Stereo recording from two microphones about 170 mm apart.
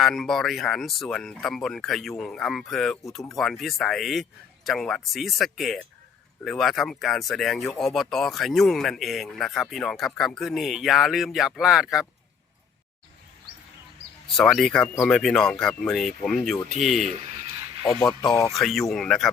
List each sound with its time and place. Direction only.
0.0 s speech: centre (ahead or behind)
14.3 s speech: centre (ahead or behind)
18.0 s speech: 20° left (ahead or behind)
18.5 s speech: centre (ahead or behind)